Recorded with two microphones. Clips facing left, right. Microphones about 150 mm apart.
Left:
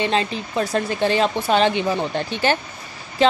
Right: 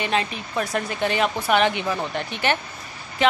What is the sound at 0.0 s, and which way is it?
Speech, 30° left (ahead or behind).